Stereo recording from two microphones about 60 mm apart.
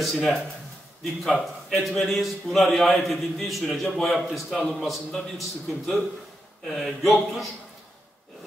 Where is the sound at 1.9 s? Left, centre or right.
Centre.